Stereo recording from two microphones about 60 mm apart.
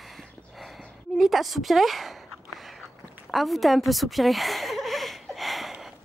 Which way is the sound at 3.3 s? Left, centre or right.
Centre.